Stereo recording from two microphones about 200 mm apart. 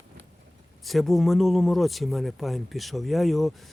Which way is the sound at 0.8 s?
Centre (ahead or behind).